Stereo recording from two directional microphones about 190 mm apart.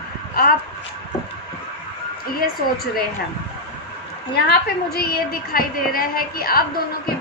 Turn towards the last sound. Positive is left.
turn(degrees=50)  # may be behind; listen again after turning